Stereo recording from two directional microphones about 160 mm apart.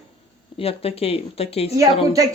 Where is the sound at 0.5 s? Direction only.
35° left (ahead or behind).